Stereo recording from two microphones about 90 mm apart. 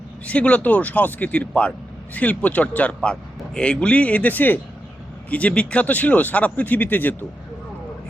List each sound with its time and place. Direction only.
0.3 s a man's voice: 15° left (ahead or behind)